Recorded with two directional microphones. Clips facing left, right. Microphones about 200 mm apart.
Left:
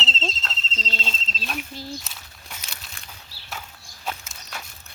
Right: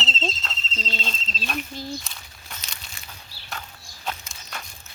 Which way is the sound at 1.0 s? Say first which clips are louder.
Right 1 dB; 5° left (ahead or behind).